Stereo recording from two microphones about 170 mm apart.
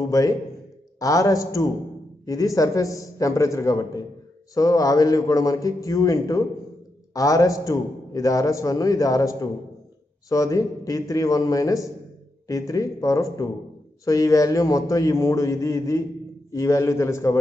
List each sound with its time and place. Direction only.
0.1 s a man's voice: 20° left (ahead or behind)